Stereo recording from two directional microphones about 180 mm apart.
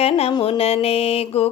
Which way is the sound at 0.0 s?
30° left (ahead or behind).